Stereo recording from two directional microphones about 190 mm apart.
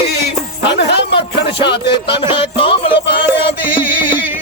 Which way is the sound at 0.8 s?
65° left (ahead or behind).